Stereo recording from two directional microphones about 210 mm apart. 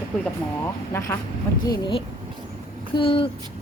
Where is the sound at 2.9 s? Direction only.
25° left (ahead or behind).